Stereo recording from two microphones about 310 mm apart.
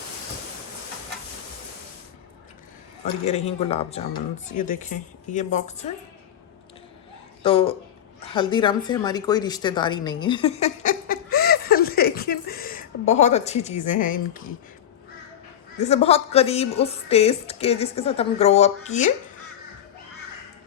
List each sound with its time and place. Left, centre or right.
3.2 s a woman's voice: left
7.4 s a woman's voice: centre
15.9 s a woman's voice: centre